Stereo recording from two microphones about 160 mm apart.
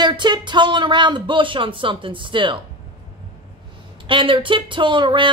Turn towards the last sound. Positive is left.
turn(degrees=-30)  # may be behind; listen again after turning